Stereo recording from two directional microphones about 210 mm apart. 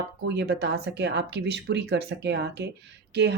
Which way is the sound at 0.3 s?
50° right (ahead or behind).